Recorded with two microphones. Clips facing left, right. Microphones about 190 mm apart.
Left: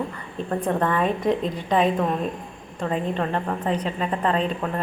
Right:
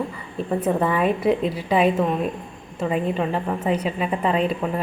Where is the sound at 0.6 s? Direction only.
5° right (ahead or behind).